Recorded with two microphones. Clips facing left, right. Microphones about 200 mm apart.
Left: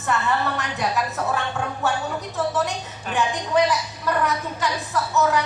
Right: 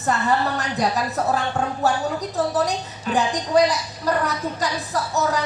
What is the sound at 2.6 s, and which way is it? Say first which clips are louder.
Speech: right 4 dB; 35° right (ahead or behind).